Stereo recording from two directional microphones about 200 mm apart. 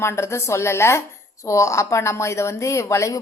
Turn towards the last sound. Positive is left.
turn(degrees=15)  # may be behind; listen again after turning